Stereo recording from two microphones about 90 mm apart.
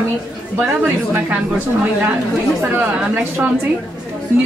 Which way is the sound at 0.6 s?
25° right (ahead or behind).